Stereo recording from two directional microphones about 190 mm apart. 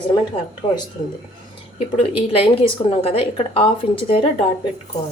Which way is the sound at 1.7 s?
30° left (ahead or behind).